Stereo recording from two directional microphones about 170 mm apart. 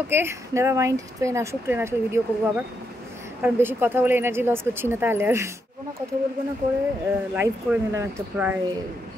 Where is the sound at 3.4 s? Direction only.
15° right (ahead or behind).